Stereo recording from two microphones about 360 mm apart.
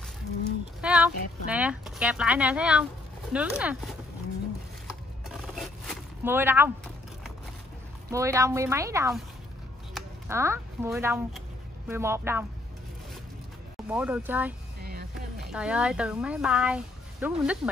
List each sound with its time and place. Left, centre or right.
0.7 s speech: centre
5.3 s a sound: centre
8.1 s speech: centre
13.8 s speech: centre
14.8 s music: right
15.4 s speech: centre